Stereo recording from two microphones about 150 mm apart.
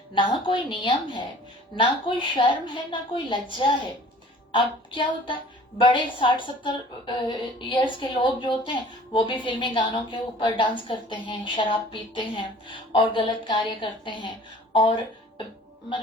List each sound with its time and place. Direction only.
0.1 s a woman's voice: 35° left (ahead or behind)
4.5 s a woman's voice: 35° left (ahead or behind)